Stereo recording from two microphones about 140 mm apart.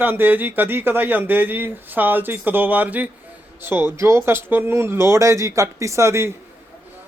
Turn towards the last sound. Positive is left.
turn(degrees=-20)  # may be behind; listen again after turning